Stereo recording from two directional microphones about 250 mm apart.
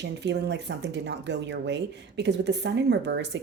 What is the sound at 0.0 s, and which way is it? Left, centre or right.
Speech, right.